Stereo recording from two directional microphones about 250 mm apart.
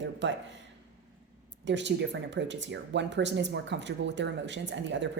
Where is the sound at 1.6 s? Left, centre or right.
Right.